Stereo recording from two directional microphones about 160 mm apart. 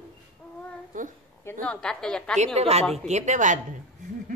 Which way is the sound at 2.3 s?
45° right (ahead or behind).